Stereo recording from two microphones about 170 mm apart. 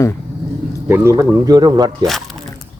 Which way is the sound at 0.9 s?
15° right (ahead or behind).